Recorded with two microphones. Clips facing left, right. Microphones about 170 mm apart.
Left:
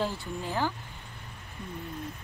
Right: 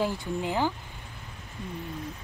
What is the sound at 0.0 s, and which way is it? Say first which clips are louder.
Speech: right 4 dB; 15° right (ahead or behind).